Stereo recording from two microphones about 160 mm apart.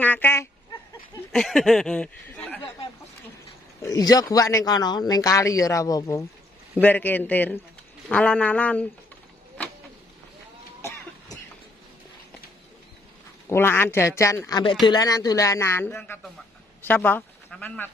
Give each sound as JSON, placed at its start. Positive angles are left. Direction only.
{"t": 0.0, "sound": "a sound", "side_deg": 15}
{"t": 1.3, "sound": "speech", "side_deg": 5}
{"t": 3.8, "sound": "speech", "side_deg": 20}
{"t": 10.8, "sound": "cough", "side_deg": 15}
{"t": 13.5, "sound": "speech", "side_deg": 15}